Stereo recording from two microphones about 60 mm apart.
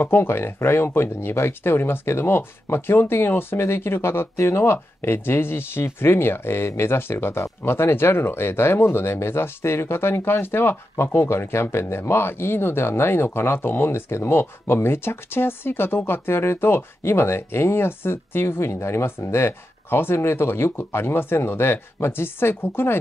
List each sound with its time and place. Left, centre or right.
0.0 s speech: left